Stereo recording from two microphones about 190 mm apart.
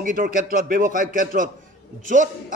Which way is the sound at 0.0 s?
45° right (ahead or behind).